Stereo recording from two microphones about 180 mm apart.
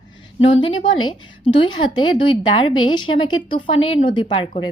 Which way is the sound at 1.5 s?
25° left (ahead or behind).